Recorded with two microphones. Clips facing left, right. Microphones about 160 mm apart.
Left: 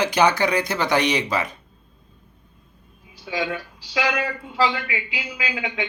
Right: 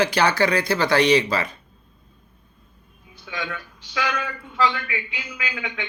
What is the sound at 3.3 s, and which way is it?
Speech, 35° left (ahead or behind).